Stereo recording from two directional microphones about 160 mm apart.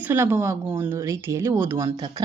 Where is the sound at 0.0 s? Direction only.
15° right (ahead or behind).